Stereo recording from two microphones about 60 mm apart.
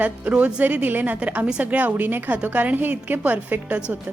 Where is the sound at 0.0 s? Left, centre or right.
Right.